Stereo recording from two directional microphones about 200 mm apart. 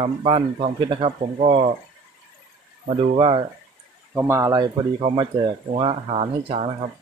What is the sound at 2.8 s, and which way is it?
Speech, 30° right (ahead or behind).